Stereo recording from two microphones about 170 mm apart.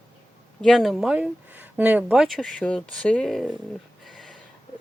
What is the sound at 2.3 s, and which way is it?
Speech, 5° left (ahead or behind).